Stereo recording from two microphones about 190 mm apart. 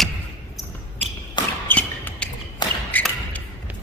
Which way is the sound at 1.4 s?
25° left (ahead or behind).